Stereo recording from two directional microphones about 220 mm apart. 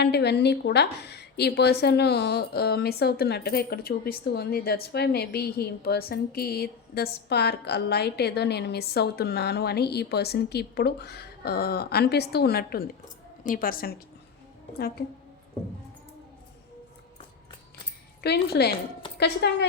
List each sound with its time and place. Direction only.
0.0 s a woman's voice: 50° left (ahead or behind)
18.2 s a woman's voice: 50° left (ahead or behind)